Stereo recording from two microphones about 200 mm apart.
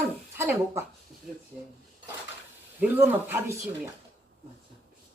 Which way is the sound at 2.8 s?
10° right (ahead or behind).